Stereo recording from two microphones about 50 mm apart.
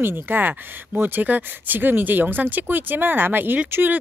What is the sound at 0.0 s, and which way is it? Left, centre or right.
Speech, right.